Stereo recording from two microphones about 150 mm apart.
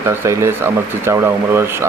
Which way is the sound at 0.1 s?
15° right (ahead or behind).